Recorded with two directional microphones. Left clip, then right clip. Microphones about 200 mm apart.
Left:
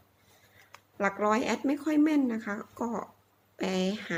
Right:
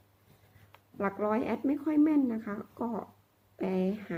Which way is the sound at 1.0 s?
10° left (ahead or behind).